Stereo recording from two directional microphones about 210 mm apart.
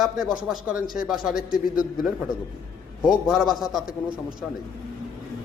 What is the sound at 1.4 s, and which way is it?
Speech, 40° left (ahead or behind).